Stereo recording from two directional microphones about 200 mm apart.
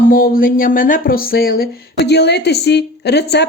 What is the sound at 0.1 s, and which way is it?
Speech, 45° left (ahead or behind).